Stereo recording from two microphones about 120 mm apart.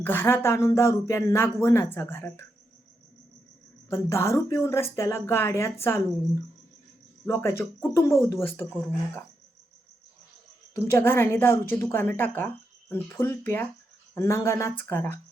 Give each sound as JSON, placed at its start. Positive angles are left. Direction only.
{"t": 0.0, "sound": "speech", "side_deg": 15}
{"t": 3.8, "sound": "speech", "side_deg": 20}
{"t": 7.3, "sound": "speech", "side_deg": 20}
{"t": 10.8, "sound": "speech", "side_deg": 20}